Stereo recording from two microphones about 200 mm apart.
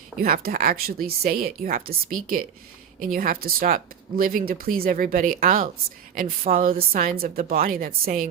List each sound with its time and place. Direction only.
0.2 s a woman's voice: 50° right (ahead or behind)